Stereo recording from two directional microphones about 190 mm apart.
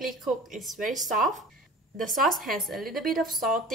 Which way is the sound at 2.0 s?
45° right (ahead or behind).